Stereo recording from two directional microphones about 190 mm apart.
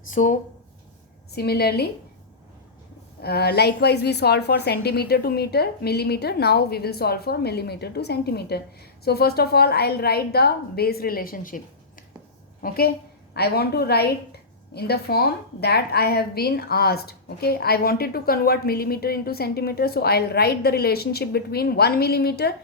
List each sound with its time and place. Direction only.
0.1 s speech: 40° left (ahead or behind)
1.3 s a woman's voice: 55° left (ahead or behind)
3.2 s a woman's voice: 55° left (ahead or behind)
12.6 s a woman's voice: 50° left (ahead or behind)